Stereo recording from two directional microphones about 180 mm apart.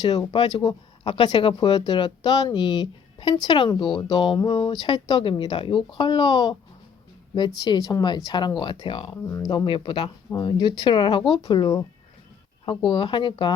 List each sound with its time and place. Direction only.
0.0 s speech: 20° left (ahead or behind)
7.6 s speech: 20° left (ahead or behind)